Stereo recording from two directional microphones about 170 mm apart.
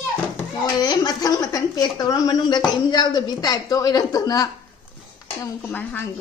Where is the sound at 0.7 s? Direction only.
25° left (ahead or behind).